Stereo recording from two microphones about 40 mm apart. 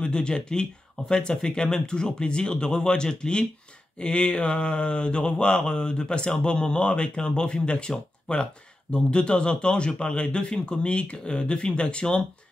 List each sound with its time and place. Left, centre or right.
0.0 s speech: left